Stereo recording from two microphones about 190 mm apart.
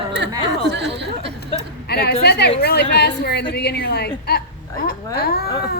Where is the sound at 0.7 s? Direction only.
65° right (ahead or behind).